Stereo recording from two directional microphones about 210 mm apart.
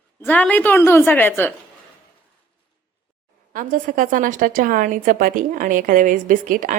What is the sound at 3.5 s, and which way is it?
A woman's voice, 40° right (ahead or behind).